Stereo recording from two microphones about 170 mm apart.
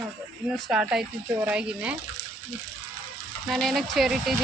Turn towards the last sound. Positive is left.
turn(degrees=0)  # may be behind; listen again after turning